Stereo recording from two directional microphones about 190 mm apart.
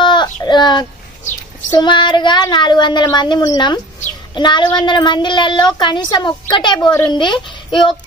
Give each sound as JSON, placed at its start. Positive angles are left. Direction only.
{"t": 0.0, "sound": "child singing", "side_deg": 25}
{"t": 1.7, "sound": "a child's voice", "side_deg": 25}